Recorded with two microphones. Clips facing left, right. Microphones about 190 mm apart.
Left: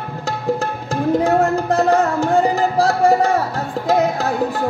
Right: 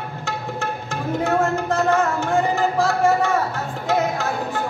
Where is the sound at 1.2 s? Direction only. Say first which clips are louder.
Left 4 dB; 35° left (ahead or behind).